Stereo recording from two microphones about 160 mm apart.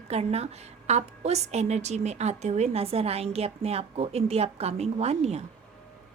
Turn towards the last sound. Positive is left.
turn(degrees=-40)  # may be behind; listen again after turning